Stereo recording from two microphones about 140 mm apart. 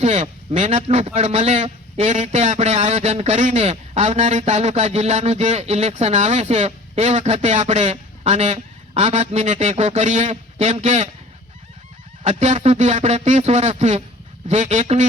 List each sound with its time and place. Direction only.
0.0 s a man's voice: 55° right (ahead or behind)
12.2 s a man's voice: 55° right (ahead or behind)